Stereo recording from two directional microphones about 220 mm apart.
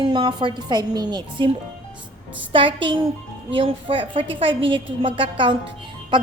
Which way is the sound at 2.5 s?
25° right (ahead or behind).